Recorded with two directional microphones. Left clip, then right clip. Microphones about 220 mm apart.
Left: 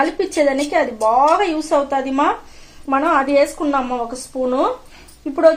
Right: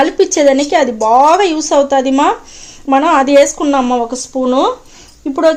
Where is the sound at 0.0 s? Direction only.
50° right (ahead or behind).